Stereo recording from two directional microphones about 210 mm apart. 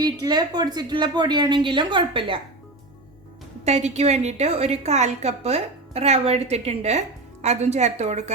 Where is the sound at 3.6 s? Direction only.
30° right (ahead or behind).